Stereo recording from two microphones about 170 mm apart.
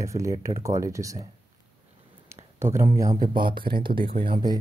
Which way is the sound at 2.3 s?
15° right (ahead or behind).